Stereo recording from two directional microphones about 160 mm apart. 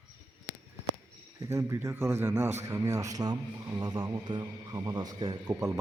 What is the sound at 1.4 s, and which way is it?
A man's voice, 20° right (ahead or behind).